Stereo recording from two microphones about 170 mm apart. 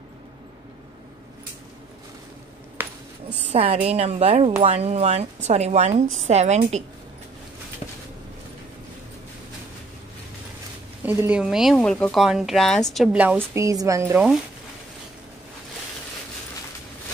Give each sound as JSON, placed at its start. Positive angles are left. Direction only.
{"t": 3.4, "sound": "a woman's voice", "side_deg": -35}
{"t": 11.1, "sound": "speech", "side_deg": -10}